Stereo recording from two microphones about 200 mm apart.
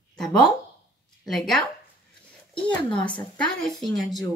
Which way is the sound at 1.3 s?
Centre (ahead or behind).